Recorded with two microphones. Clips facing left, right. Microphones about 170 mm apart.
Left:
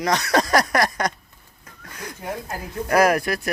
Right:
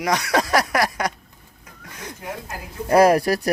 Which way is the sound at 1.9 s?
20° right (ahead or behind).